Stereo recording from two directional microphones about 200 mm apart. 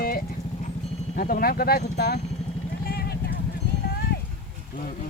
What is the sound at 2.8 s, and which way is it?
Vehicle, 50° left (ahead or behind).